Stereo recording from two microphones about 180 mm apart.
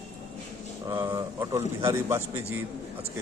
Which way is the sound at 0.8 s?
25° right (ahead or behind).